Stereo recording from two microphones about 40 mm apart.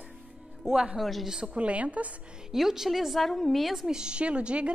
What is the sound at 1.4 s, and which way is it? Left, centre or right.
Speech, right.